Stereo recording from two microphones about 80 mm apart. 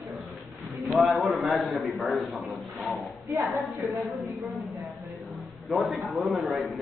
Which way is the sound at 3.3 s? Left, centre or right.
Right.